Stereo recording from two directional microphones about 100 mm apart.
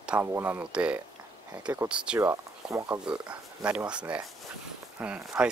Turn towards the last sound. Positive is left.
turn(degrees=-10)  # may be behind; listen again after turning